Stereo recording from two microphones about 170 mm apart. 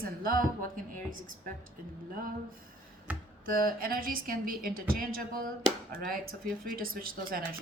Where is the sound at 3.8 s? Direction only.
55° right (ahead or behind).